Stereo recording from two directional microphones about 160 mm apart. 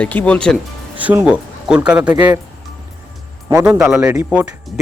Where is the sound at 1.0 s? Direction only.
10° right (ahead or behind).